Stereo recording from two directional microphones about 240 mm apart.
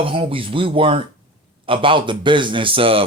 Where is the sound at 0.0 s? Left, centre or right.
Right.